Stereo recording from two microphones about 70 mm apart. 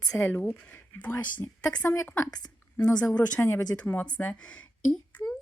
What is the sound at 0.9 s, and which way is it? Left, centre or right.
Speech, left.